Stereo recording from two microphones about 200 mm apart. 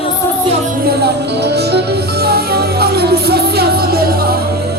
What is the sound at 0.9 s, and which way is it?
Music, 55° right (ahead or behind).